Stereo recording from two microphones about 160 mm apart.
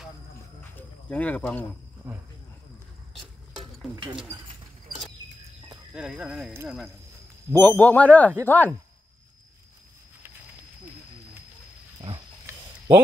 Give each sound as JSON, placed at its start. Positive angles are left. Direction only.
{"t": 0.7, "sound": "speech", "side_deg": 10}
{"t": 2.0, "sound": "speech", "side_deg": -15}
{"t": 3.2, "sound": "stir", "side_deg": 0}
{"t": 3.9, "sound": "speech", "side_deg": -30}
{"t": 5.9, "sound": "speech", "side_deg": -5}
{"t": 7.5, "sound": "a man's voice", "side_deg": 10}
{"t": 12.4, "sound": "a sound", "side_deg": -15}